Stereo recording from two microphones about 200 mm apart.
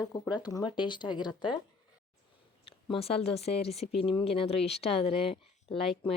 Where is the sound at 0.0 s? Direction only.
20° left (ahead or behind).